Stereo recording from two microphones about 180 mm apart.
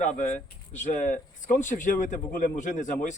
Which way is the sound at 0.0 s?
40° left (ahead or behind).